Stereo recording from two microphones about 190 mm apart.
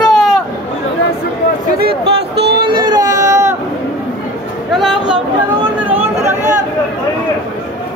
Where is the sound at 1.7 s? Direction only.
60° right (ahead or behind).